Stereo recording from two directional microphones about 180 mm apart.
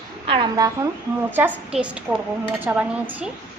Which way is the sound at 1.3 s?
10° right (ahead or behind).